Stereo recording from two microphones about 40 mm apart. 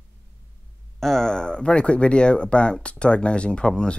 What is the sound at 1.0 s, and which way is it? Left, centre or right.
Speech, centre.